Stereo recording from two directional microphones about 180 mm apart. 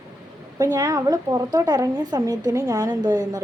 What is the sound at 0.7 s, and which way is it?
A woman's voice, 20° right (ahead or behind).